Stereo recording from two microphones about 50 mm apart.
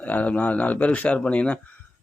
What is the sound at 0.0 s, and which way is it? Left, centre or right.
Speech, left.